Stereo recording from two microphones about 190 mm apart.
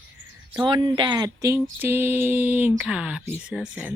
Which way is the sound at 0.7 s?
25° right (ahead or behind).